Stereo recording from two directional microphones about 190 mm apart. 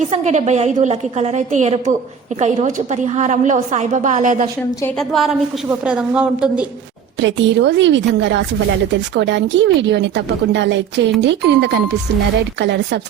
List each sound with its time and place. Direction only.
0.1 s a woman's voice: 35° right (ahead or behind)
4.9 s a woman's voice: centre (ahead or behind)
7.2 s a woman's voice: 70° right (ahead or behind)